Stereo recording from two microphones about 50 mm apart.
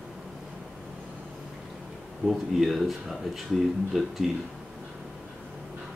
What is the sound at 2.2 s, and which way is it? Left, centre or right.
Speech, centre.